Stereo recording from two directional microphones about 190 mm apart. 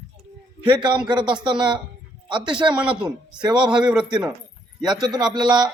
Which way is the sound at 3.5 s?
5° right (ahead or behind).